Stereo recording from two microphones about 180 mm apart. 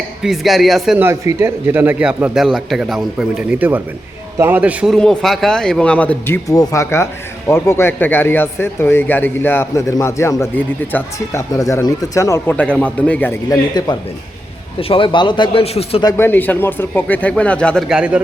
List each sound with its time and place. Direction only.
0.2 s speech: centre (ahead or behind)
1.0 s a man's voice: 15° right (ahead or behind); by 16.0 s 35° left (ahead or behind)
16.0 s speech: 15° left (ahead or behind); by 18.2 s 5° right (ahead or behind)